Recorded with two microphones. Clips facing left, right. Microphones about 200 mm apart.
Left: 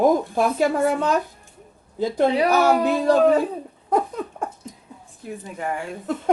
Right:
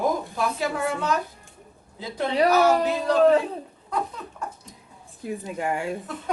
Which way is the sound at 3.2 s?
10° left (ahead or behind).